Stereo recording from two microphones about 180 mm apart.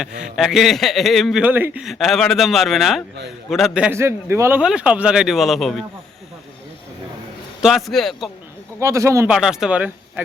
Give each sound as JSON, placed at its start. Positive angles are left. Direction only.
{"t": 0.0, "sound": "a man's voice", "side_deg": -5}
{"t": 7.6, "sound": "a man's voice", "side_deg": 0}
{"t": 8.8, "sound": "speech", "side_deg": -15}
{"t": 9.3, "sound": "a man's voice", "side_deg": -5}